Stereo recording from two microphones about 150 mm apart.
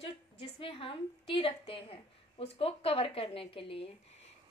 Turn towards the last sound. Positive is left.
turn(degrees=40)  # may be behind; listen again after turning